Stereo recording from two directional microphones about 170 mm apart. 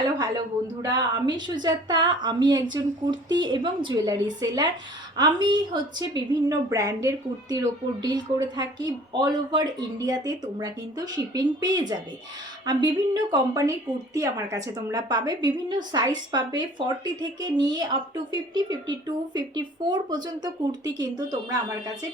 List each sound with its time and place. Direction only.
0.2 s a woman's voice: 25° right (ahead or behind)